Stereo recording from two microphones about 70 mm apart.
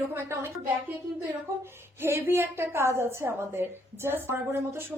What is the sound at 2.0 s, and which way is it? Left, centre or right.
A woman's voice, right.